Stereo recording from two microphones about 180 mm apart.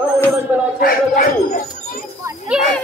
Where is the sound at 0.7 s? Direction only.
55° left (ahead or behind).